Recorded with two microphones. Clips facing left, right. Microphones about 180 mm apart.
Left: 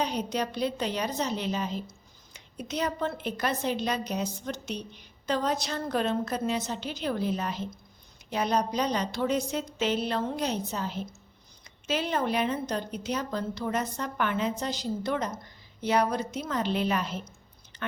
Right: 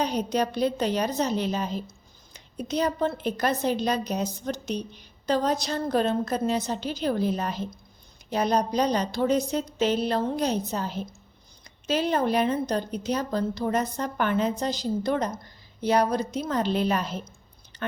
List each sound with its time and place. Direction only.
0.0 s a woman's voice: 40° right (ahead or behind)
17.7 s chewing: 35° right (ahead or behind)